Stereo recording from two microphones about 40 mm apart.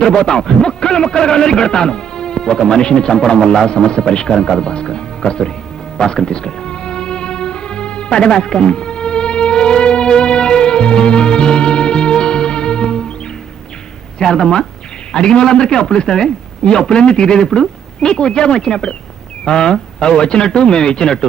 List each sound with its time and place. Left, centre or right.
0.0 s a man's voice: centre
6.0 s music: centre
14.2 s a man's voice: centre